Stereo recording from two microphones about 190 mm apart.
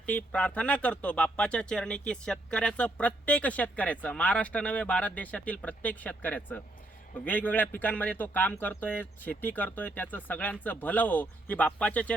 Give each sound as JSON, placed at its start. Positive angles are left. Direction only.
{"t": 0.0, "sound": "speech", "side_deg": 5}